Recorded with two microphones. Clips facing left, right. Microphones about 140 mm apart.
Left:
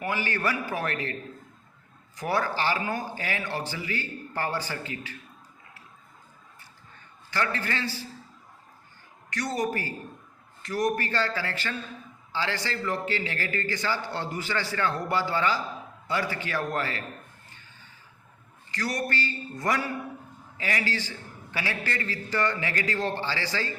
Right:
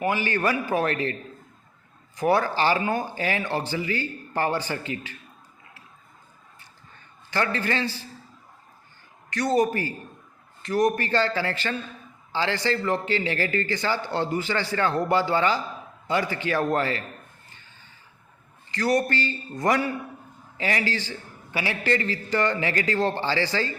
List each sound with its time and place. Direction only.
0.0 s a man's voice: 20° right (ahead or behind)
2.1 s a man's voice: 25° right (ahead or behind)
7.3 s a man's voice: 25° right (ahead or behind)
9.3 s a man's voice: 25° right (ahead or behind)
18.7 s a man's voice: 25° right (ahead or behind)